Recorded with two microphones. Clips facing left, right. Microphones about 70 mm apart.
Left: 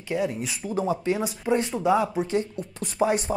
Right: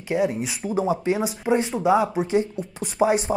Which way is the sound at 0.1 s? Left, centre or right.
Centre.